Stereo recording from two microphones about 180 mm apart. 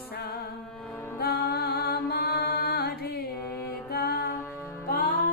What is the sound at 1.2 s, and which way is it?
Music, 60° left (ahead or behind).